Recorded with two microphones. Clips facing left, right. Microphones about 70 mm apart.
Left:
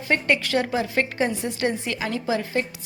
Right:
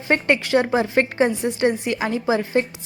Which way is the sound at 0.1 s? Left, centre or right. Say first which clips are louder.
Right 4 dB; right.